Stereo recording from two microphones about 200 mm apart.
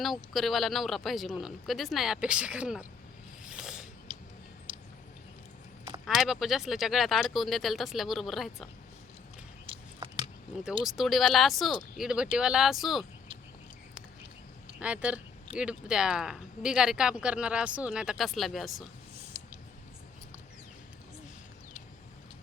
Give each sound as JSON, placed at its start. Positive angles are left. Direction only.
{"t": 0.0, "sound": "speech", "side_deg": 0}
{"t": 3.4, "sound": "a sound", "side_deg": -5}
{"t": 4.1, "sound": "tick-tock", "side_deg": -25}
{"t": 6.1, "sound": "speech", "side_deg": 0}
{"t": 9.6, "sound": "a sound", "side_deg": -25}
{"t": 10.8, "sound": "speech", "side_deg": 0}
{"t": 14.8, "sound": "speech", "side_deg": -5}